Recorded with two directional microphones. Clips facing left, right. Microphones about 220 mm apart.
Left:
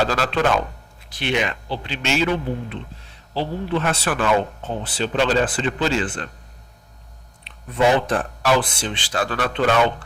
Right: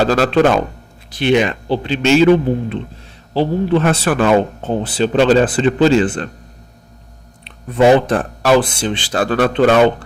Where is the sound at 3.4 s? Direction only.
45° right (ahead or behind).